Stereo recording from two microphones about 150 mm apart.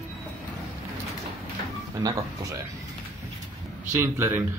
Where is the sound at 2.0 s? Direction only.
25° right (ahead or behind).